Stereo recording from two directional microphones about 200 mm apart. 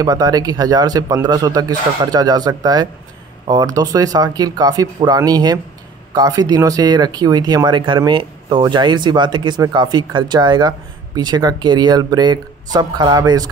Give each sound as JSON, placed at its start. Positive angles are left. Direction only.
{"t": 0.0, "sound": "speech", "side_deg": -20}